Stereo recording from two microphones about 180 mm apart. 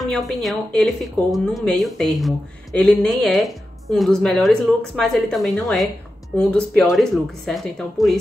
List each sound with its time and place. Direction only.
0.0 s speech: centre (ahead or behind)